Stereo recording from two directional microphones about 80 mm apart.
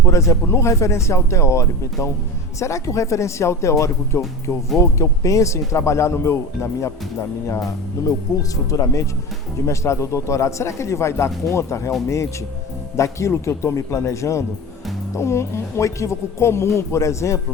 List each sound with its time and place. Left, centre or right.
0.0 s speech: left